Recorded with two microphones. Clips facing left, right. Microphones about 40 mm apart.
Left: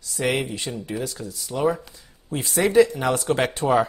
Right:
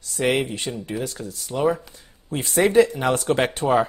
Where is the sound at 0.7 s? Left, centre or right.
Centre.